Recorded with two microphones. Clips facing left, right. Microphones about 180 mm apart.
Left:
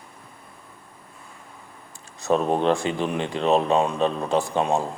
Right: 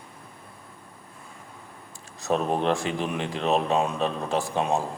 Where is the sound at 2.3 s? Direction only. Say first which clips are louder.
Left 3 dB; 35° left (ahead or behind).